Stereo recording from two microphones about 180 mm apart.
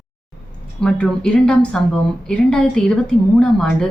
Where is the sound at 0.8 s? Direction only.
5° left (ahead or behind).